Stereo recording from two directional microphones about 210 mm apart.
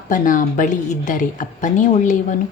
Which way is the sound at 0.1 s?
40° left (ahead or behind).